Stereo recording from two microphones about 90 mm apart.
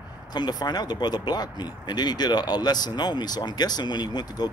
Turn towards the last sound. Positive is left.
turn(degrees=55)  # may be behind; listen again after turning